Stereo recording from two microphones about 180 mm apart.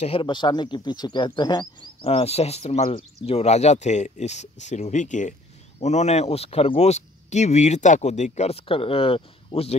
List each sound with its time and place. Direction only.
0.0 s speech: 30° left (ahead or behind)
2.0 s speech: 35° left (ahead or behind)